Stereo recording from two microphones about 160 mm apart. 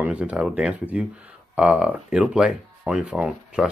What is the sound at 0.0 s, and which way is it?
Speech, 5° right (ahead or behind).